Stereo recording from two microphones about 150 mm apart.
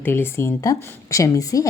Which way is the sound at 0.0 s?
15° left (ahead or behind).